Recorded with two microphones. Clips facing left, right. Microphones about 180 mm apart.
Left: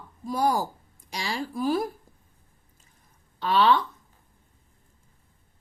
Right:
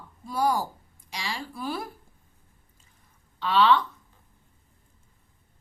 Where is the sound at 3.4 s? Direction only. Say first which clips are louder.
Even; 45° left (ahead or behind).